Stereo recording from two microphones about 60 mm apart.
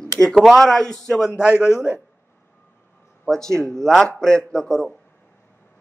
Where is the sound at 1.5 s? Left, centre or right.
Left.